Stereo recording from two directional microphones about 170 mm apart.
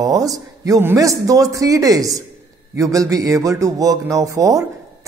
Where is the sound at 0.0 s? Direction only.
20° right (ahead or behind).